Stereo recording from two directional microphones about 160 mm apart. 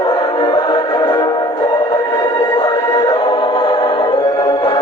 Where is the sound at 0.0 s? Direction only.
25° left (ahead or behind).